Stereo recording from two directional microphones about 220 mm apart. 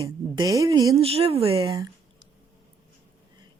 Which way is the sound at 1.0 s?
25° right (ahead or behind).